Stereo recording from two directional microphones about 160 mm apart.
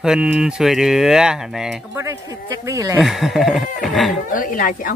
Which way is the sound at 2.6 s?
20° right (ahead or behind).